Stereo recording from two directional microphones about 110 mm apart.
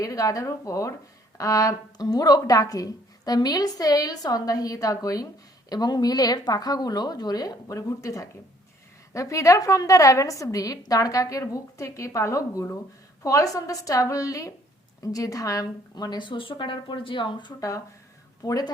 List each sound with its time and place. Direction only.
0.0 s speech: 30° left (ahead or behind); by 17.5 s 45° left (ahead or behind)
17.6 s speech: 30° left (ahead or behind)